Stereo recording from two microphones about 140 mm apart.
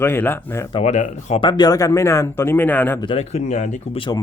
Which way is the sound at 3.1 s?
50° left (ahead or behind).